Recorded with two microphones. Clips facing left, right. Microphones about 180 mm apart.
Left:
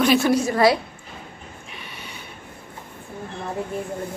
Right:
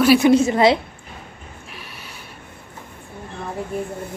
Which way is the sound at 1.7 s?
Centre (ahead or behind).